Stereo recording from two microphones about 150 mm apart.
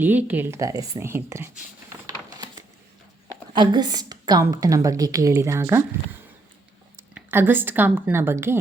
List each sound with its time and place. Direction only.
0.0 s speech: 10° right (ahead or behind)
2.0 s a sound: 25° right (ahead or behind)
3.5 s a woman's voice: 30° right (ahead or behind)